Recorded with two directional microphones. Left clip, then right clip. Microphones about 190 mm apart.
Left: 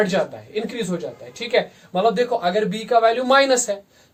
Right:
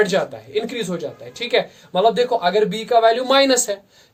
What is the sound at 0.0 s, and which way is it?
Speech, 45° right (ahead or behind).